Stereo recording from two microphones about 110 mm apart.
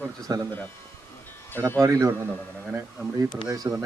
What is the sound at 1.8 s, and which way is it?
Speech, 30° right (ahead or behind).